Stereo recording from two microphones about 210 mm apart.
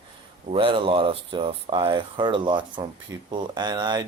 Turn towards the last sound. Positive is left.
turn(degrees=-20)  # may be behind; listen again after turning